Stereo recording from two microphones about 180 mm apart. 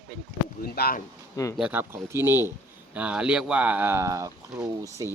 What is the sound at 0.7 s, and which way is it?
Speech, 60° left (ahead or behind).